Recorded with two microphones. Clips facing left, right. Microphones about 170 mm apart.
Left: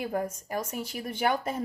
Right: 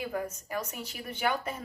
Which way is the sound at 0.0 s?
45° left (ahead or behind).